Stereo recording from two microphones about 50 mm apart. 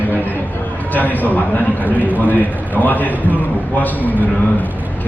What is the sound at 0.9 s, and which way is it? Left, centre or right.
Speech, left.